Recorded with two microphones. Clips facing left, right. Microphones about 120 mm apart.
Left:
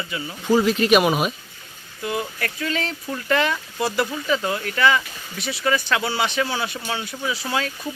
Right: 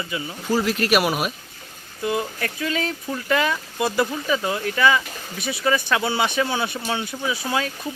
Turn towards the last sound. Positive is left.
turn(degrees=-15)  # may be behind; listen again after turning